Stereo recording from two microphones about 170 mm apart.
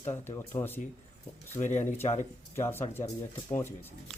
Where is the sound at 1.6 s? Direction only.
45° left (ahead or behind).